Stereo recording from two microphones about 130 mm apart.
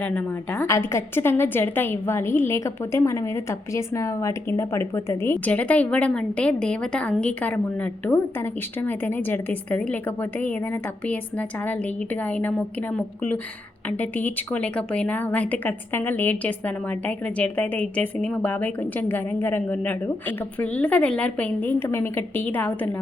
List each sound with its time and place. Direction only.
0.6 s a woman's voice: 20° left (ahead or behind)
8.9 s a woman's voice: 15° left (ahead or behind)
11.1 s a woman's voice: 10° left (ahead or behind)